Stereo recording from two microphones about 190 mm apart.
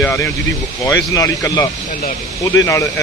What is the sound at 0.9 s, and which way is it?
Speech, 15° left (ahead or behind).